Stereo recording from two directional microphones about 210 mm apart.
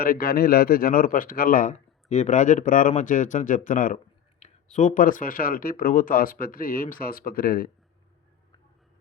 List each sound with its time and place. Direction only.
0.0 s a man's voice: 45° left (ahead or behind)